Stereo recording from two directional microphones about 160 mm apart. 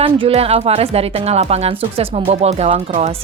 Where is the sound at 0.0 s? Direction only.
40° right (ahead or behind).